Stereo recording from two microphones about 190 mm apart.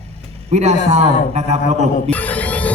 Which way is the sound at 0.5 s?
35° right (ahead or behind).